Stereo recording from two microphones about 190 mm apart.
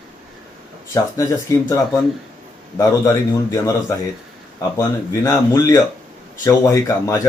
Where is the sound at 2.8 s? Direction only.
15° left (ahead or behind).